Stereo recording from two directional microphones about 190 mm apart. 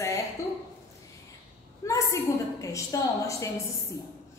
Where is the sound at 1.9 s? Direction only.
15° left (ahead or behind).